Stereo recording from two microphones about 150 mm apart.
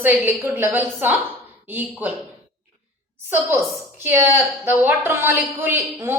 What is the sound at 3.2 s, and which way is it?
A woman's voice, 15° right (ahead or behind).